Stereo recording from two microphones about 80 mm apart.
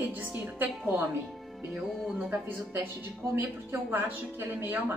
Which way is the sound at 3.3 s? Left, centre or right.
Right.